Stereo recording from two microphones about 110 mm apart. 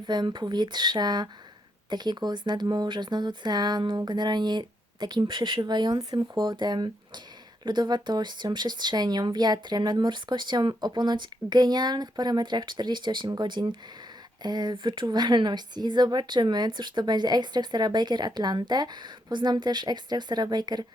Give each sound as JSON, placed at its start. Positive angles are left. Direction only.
{"t": 0.0, "sound": "a woman's voice", "side_deg": -40}